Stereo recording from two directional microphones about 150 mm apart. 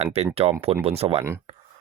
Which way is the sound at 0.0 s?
45° right (ahead or behind).